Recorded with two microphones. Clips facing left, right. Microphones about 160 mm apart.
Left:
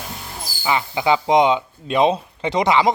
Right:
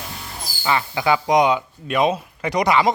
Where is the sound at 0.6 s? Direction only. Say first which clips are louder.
Left 1 dB; 15° left (ahead or behind).